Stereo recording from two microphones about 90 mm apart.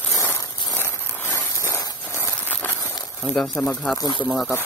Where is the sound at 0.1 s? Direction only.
35° left (ahead or behind).